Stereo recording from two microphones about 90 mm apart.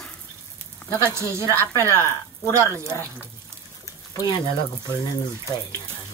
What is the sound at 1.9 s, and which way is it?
Speech, 30° left (ahead or behind).